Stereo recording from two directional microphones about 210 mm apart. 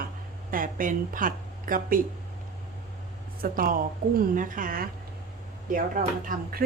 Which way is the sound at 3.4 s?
40° right (ahead or behind).